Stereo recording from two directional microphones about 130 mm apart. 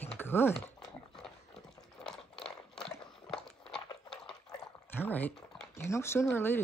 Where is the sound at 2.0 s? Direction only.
5° left (ahead or behind).